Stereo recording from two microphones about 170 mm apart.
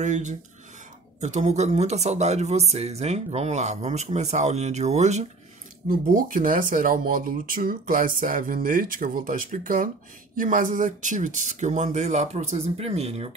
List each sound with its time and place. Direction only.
0.0 s speech: 45° right (ahead or behind)
5.9 s speech: 55° right (ahead or behind); by 13.3 s 35° right (ahead or behind)